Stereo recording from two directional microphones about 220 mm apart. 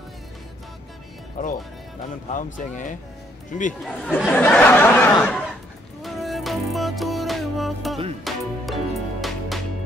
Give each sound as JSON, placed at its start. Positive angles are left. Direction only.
{"t": 2.3, "sound": "speech", "side_deg": 35}
{"t": 3.8, "sound": "speech", "side_deg": 0}
{"t": 6.0, "sound": "music", "side_deg": 0}